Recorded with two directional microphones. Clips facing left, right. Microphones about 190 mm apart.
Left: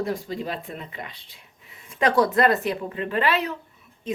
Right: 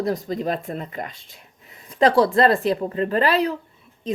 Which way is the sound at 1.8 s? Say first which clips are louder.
Right 4 dB; 35° right (ahead or behind).